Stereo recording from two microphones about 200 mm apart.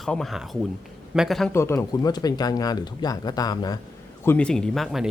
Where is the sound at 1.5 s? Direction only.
15° left (ahead or behind).